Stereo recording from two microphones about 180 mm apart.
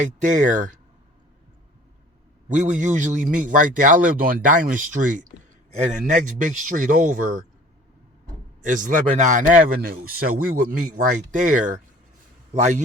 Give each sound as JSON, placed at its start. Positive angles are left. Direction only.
{"t": 0.0, "sound": "a man's voice", "side_deg": -45}
{"t": 2.5, "sound": "a man's voice", "side_deg": -45}
{"t": 8.6, "sound": "a man's voice", "side_deg": -45}